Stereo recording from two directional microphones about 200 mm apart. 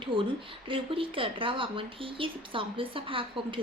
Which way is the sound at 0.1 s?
25° right (ahead or behind).